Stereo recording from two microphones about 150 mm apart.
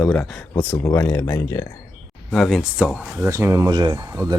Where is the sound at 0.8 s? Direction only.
15° left (ahead or behind).